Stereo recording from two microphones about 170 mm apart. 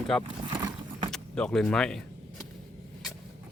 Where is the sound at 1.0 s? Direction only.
5° left (ahead or behind).